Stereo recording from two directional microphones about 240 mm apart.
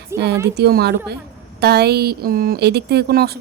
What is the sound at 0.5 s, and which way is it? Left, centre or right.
A woman's voice, right.